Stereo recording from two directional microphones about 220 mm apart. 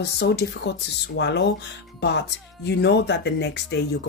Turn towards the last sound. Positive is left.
turn(degrees=50)  # may be behind; listen again after turning